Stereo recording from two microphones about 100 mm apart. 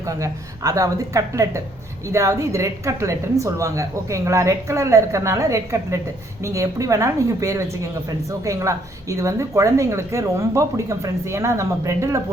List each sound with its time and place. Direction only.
0.0 s a woman's voice: 30° right (ahead or behind)